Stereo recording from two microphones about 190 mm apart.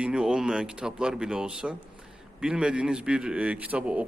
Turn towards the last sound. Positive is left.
turn(degrees=-5)  # may be behind; listen again after turning